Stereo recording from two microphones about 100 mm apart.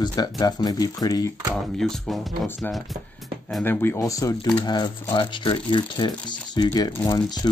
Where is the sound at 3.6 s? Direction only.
20° left (ahead or behind).